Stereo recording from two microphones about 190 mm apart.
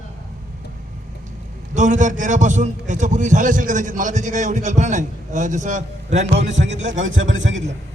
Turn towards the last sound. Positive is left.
turn(degrees=-80)